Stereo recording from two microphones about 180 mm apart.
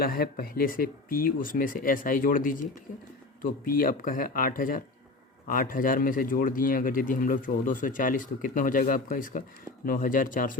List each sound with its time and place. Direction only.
0.0 s speech: 55° left (ahead or behind)